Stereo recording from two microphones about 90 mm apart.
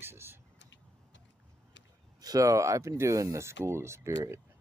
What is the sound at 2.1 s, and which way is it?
Speech, 45° right (ahead or behind).